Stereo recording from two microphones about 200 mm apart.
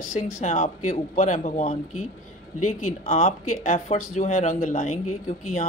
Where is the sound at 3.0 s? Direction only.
30° left (ahead or behind).